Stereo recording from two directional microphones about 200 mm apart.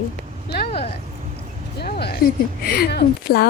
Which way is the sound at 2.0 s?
50° left (ahead or behind).